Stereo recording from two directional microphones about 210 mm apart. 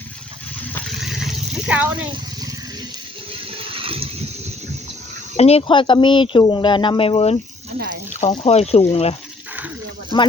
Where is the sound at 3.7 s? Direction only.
25° right (ahead or behind).